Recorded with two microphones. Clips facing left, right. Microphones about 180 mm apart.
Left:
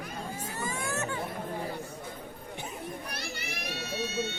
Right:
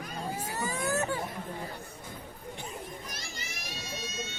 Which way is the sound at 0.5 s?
40° right (ahead or behind).